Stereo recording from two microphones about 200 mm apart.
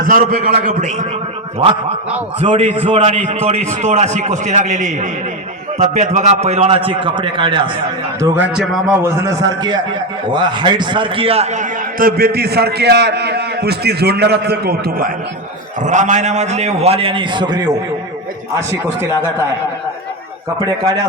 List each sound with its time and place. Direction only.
0.0 s a man's voice: 45° right (ahead or behind)
2.4 s a man's voice: 30° right (ahead or behind)
8.2 s a man's voice: 5° right (ahead or behind)
9.4 s a man's voice: 20° right (ahead or behind); by 15.1 s 50° right (ahead or behind)
15.8 s a man's voice: 35° right (ahead or behind); by 17.7 s 20° right (ahead or behind)
20.6 s a man's voice: 20° right (ahead or behind)